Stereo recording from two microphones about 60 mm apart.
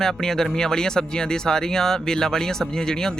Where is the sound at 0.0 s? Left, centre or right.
Centre.